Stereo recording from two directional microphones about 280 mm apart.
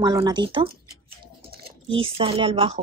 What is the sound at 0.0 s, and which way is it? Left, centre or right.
A woman's voice, centre.